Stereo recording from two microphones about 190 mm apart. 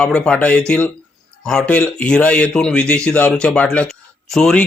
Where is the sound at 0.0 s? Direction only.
5° left (ahead or behind).